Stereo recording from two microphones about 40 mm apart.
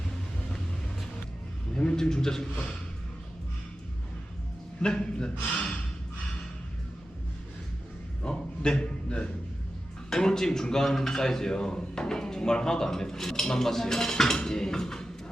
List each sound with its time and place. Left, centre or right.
1.7 s a man's voice: centre
4.8 s speech: left
8.2 s a sound: left
10.1 s speech: centre